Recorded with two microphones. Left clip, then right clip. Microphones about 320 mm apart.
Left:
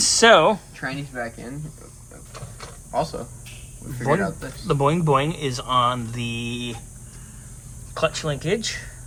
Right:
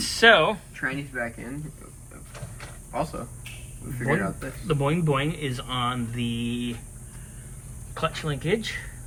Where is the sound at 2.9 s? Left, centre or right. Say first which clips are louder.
Left 5 dB; left.